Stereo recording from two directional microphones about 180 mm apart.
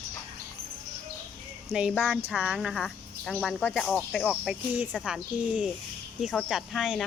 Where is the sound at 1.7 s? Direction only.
5° right (ahead or behind).